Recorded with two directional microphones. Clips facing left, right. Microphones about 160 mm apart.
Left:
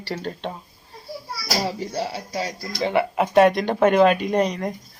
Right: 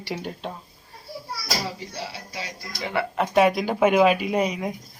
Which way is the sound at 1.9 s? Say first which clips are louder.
Left 8 dB; 45° left (ahead or behind).